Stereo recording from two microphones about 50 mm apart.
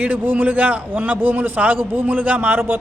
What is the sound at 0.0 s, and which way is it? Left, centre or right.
A man's voice, right.